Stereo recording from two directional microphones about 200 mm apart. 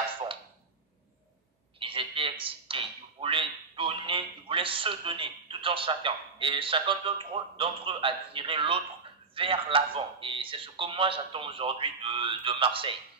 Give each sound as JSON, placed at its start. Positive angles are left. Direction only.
{"t": 1.8, "sound": "a man's voice", "side_deg": -25}